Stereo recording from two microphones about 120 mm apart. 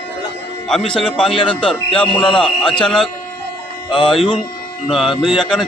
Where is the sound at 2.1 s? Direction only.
5° left (ahead or behind).